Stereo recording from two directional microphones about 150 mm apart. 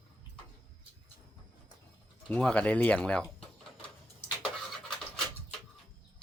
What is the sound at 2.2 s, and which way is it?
Speech, 10° left (ahead or behind).